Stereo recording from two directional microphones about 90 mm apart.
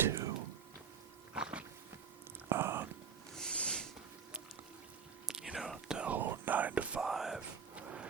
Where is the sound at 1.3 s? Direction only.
10° right (ahead or behind).